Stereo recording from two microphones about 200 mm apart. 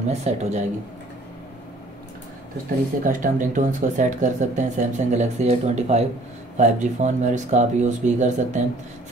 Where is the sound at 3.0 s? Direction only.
40° right (ahead or behind).